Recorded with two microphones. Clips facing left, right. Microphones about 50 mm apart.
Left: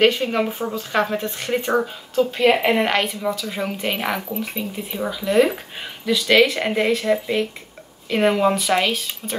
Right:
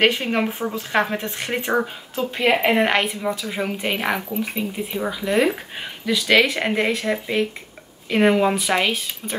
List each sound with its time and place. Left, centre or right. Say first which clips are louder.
0.0 s a woman's voice: left 1 dB; right